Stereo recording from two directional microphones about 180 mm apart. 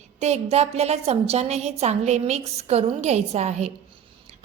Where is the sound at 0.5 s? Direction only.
35° right (ahead or behind).